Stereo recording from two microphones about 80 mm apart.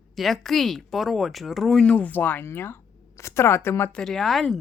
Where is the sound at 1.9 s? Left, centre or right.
Centre.